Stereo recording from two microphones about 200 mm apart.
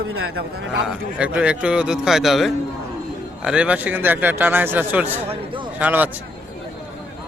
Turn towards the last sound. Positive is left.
turn(degrees=-10)  # may be behind; listen again after turning